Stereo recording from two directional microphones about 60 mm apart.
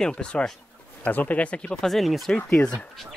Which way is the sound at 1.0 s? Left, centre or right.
Left.